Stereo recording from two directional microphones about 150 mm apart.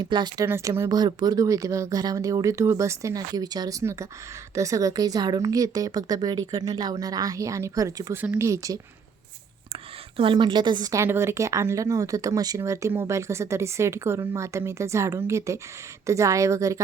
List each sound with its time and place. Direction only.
0.0 s speech: 30° right (ahead or behind)
0.4 s speech: 15° right (ahead or behind)
10.2 s speech: 35° right (ahead or behind)